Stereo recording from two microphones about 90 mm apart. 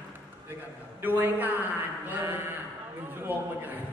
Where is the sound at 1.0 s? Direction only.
20° right (ahead or behind).